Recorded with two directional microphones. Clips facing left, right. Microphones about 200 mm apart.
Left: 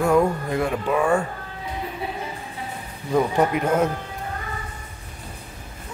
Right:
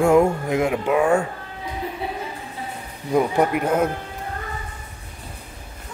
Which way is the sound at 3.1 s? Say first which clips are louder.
Right 1 dB; 10° right (ahead or behind).